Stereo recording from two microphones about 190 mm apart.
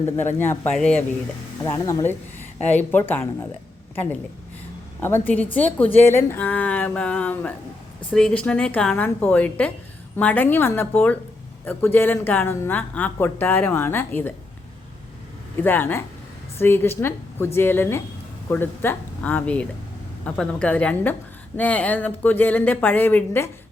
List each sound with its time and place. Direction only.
0.3 s a woman's voice: 10° left (ahead or behind)
1.6 s a woman's voice: 20° left (ahead or behind)
15.5 s a woman's voice: 10° left (ahead or behind)